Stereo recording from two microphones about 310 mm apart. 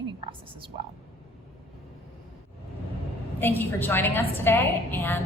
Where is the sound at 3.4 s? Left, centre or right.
Centre.